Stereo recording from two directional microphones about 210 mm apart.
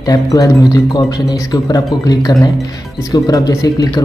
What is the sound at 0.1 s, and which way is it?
Speech, 15° left (ahead or behind).